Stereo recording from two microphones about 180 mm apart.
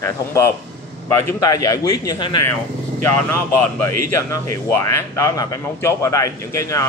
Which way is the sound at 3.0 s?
15° left (ahead or behind).